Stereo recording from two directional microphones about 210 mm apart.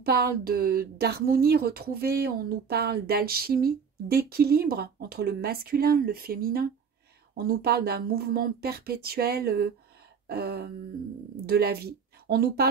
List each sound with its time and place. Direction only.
0.0 s a woman's voice: 50° right (ahead or behind)
10.2 s a sound: 50° right (ahead or behind)
11.4 s speech: 50° right (ahead or behind)